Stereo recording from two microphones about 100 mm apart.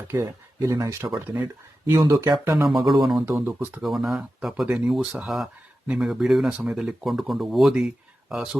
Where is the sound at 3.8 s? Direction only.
Centre (ahead or behind).